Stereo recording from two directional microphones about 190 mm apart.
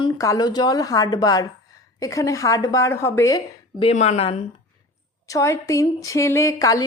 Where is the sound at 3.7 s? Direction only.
30° left (ahead or behind).